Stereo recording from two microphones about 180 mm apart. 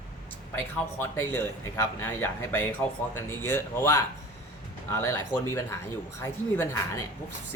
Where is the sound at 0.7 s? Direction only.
10° left (ahead or behind).